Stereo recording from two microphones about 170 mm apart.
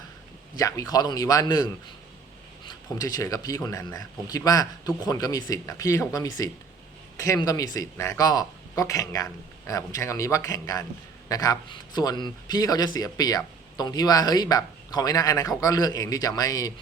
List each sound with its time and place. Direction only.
0.5 s a man's voice: 20° left (ahead or behind)
3.0 s a man's voice: 20° left (ahead or behind)